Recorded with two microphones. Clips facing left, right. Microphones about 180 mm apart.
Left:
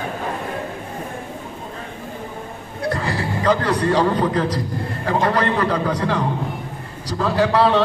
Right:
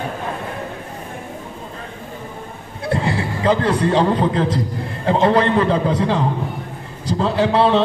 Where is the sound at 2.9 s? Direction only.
25° right (ahead or behind).